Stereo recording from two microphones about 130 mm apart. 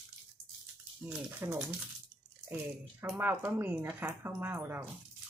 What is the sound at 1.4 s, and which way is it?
Speech, 20° right (ahead or behind).